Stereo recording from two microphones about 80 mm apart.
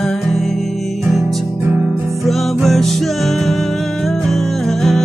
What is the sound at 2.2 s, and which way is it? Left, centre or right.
Music, centre.